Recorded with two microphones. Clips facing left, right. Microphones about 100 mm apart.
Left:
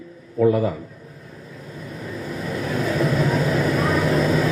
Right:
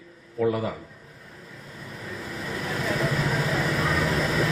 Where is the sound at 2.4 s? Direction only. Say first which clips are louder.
Left 5 dB; 35° left (ahead or behind).